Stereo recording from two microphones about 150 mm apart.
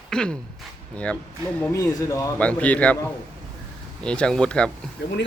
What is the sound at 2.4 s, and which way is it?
A man's voice, 10° left (ahead or behind).